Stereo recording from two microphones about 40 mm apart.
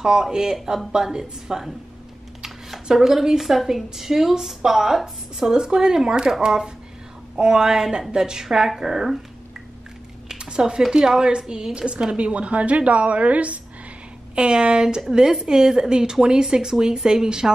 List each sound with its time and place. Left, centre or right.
0.0 s a woman's voice: centre
10.2 s a sound: centre
10.8 s a woman's voice: centre; by 13.6 s right
14.3 s a woman's voice: right